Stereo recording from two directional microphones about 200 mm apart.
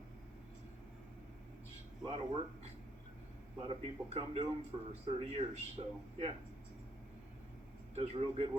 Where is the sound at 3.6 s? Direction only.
30° right (ahead or behind).